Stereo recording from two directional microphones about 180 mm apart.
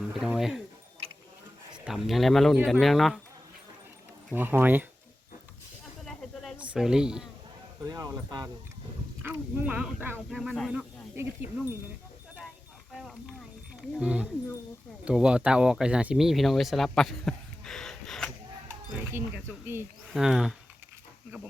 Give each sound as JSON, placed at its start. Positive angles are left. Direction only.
{"t": 0.1, "sound": "music", "side_deg": 0}
{"t": 1.7, "sound": "speech", "side_deg": -5}
{"t": 4.4, "sound": "speech", "side_deg": -10}
{"t": 6.1, "sound": "a sound", "side_deg": 0}
{"t": 7.9, "sound": "speech", "side_deg": -20}
{"t": 9.2, "sound": "speech", "side_deg": -10}
{"t": 12.9, "sound": "a sound", "side_deg": 0}
{"t": 13.9, "sound": "speech", "side_deg": -5}
{"t": 18.9, "sound": "speech", "side_deg": -10}